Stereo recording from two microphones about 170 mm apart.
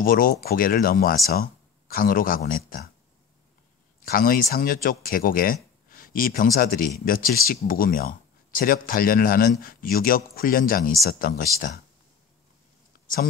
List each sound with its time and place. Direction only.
0.0 s speech: 55° left (ahead or behind)
4.0 s speech: 55° left (ahead or behind)